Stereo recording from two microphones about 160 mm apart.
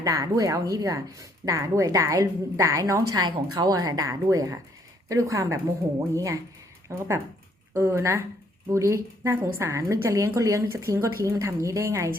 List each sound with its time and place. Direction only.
0.0 s a woman's voice: 20° right (ahead or behind)